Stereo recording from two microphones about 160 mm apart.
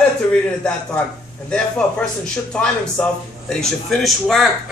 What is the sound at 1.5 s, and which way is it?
A man's voice, 5° left (ahead or behind).